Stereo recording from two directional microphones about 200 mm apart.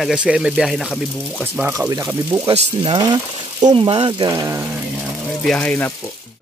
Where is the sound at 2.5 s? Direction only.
25° right (ahead or behind).